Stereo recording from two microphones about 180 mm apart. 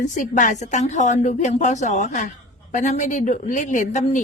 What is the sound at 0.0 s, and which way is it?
A woman's voice, 45° left (ahead or behind).